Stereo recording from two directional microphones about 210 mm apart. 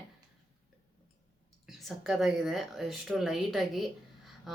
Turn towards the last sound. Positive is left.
turn(degrees=0)  # may be behind; listen again after turning